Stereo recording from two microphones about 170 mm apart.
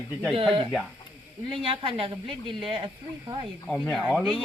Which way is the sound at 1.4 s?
30° right (ahead or behind).